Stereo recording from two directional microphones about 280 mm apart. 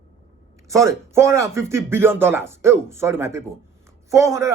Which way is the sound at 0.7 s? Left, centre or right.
Centre.